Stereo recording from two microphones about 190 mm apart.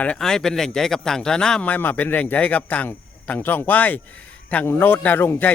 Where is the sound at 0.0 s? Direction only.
5° left (ahead or behind).